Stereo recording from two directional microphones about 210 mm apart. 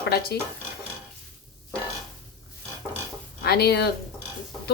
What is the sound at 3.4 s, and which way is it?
Speech, 50° left (ahead or behind).